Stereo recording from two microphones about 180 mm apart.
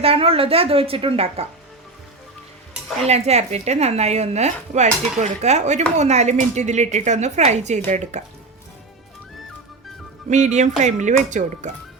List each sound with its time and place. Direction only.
0.0 s speech: 30° right (ahead or behind)
3.1 s speech: 35° right (ahead or behind)
10.2 s speech: 40° right (ahead or behind)